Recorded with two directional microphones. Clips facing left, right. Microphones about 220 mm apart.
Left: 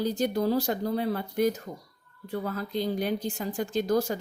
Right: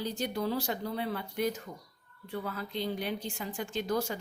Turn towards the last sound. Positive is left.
turn(degrees=40)  # may be behind; listen again after turning